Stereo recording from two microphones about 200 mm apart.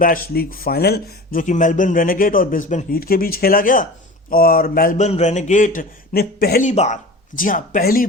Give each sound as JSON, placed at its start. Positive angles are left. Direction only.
{"t": 0.0, "sound": "speech", "side_deg": 45}